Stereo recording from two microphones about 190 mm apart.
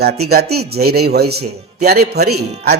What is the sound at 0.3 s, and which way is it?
Speech, 55° right (ahead or behind).